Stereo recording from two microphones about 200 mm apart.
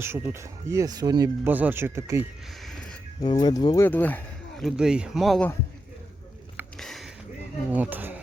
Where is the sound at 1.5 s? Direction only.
10° right (ahead or behind).